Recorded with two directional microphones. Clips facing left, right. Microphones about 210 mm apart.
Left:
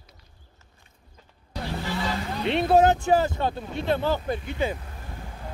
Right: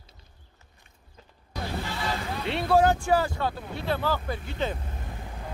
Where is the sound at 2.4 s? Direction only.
20° left (ahead or behind).